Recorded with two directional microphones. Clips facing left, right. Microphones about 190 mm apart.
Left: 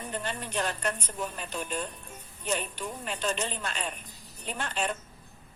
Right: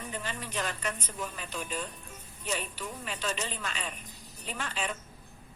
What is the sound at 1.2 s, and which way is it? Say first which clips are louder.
Speech: left 3 dB; 40° left (ahead or behind).